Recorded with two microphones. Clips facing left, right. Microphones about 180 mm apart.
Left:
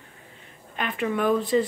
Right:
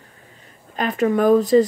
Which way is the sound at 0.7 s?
40° right (ahead or behind).